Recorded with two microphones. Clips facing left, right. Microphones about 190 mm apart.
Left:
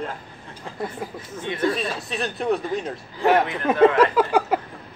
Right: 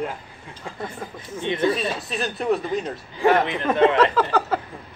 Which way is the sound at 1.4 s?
20° right (ahead or behind).